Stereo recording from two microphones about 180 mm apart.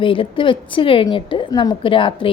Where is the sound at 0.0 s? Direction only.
30° left (ahead or behind).